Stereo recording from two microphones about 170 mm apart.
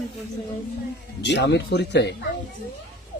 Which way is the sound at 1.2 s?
90° left.